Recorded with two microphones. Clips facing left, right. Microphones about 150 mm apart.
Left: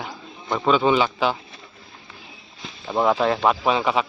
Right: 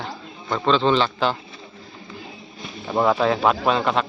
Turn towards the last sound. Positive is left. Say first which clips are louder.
# even
turn(degrees=5)  # may be behind; listen again after turning